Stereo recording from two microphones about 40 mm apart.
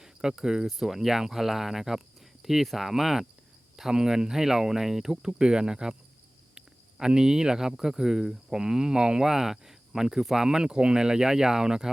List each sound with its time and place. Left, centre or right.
0.0 s speech: centre
7.0 s speech: centre